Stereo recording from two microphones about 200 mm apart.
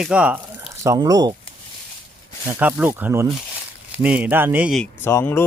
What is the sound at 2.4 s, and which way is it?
Speech, 10° right (ahead or behind).